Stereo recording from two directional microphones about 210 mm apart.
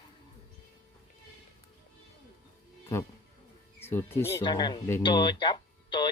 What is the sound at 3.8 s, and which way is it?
Speech, 10° left (ahead or behind).